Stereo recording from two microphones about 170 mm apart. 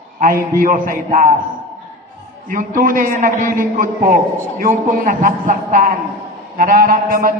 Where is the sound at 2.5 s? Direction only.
55° right (ahead or behind).